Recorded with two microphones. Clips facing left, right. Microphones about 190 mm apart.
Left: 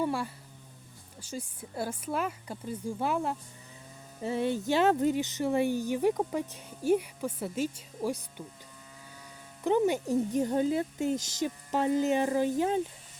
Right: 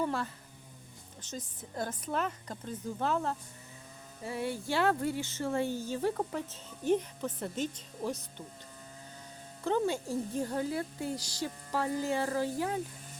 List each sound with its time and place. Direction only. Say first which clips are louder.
0.0 s speech: left 2 dB; 10° left (ahead or behind)
4.2 s speech: left 6 dB; 25° left (ahead or behind)
9.6 s speech: left 4 dB; 15° left (ahead or behind)